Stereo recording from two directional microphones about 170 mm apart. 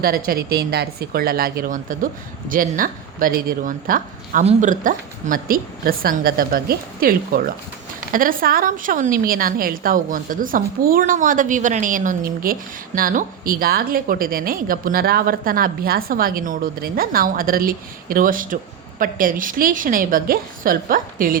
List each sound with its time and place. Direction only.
0.0 s a woman's voice: 60° right (ahead or behind)